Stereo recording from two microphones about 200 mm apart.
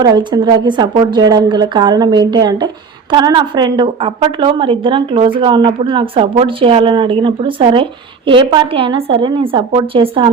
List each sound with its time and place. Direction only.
0.0 s speech: 20° right (ahead or behind)